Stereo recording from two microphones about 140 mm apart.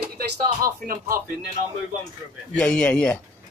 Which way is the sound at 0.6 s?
90° right.